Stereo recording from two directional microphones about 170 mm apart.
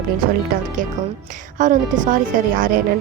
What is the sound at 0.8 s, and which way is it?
A woman's voice, 50° right (ahead or behind).